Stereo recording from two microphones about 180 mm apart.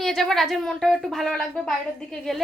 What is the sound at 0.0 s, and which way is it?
A woman's voice, centre (ahead or behind).